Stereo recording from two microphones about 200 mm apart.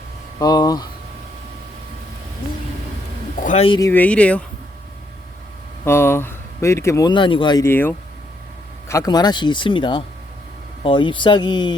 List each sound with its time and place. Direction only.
0.3 s speech: 20° left (ahead or behind)
3.4 s speech: 35° left (ahead or behind)
3.8 s speech: 10° left (ahead or behind)
5.8 s speech: 10° left (ahead or behind)
7.6 s speech: 10° left (ahead or behind)